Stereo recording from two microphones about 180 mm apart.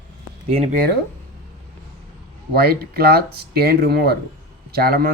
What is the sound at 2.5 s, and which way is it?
Speech, 60° right (ahead or behind).